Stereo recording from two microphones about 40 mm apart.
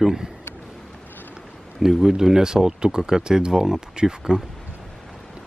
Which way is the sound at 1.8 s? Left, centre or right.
Centre.